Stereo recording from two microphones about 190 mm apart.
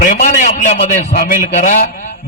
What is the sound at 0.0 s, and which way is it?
A man's voice, 45° left (ahead or behind).